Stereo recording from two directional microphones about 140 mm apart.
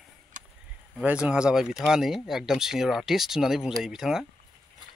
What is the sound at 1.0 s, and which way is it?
Speech, 10° right (ahead or behind).